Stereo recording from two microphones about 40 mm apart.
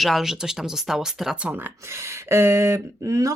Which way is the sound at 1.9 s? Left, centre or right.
Right.